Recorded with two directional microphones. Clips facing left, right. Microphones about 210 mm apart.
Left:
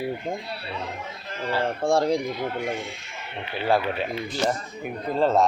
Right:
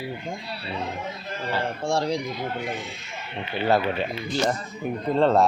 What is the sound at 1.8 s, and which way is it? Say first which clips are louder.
Speech: left 4 dB; 55° left (ahead or behind).